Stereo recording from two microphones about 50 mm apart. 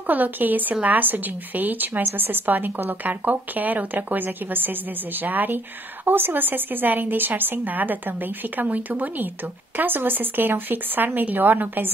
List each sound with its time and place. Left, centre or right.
0.0 s a woman's voice: right